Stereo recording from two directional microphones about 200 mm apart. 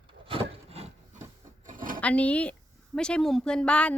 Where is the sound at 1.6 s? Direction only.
45° right (ahead or behind).